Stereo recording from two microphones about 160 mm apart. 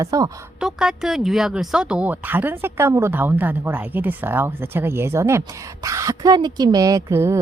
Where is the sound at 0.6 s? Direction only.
5° right (ahead or behind).